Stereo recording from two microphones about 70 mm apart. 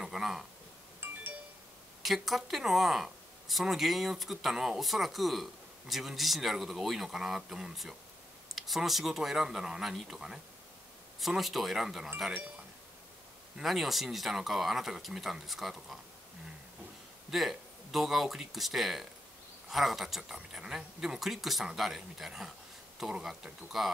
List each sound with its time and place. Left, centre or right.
0.0 s a sound: centre
1.0 s music: right
2.0 s speech: centre
13.6 s speech: centre
17.3 s speech: centre